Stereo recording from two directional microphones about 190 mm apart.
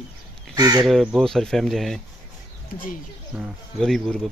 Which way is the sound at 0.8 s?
Centre (ahead or behind).